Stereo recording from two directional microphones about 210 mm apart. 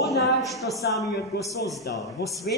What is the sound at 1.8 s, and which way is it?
Speech, 15° left (ahead or behind).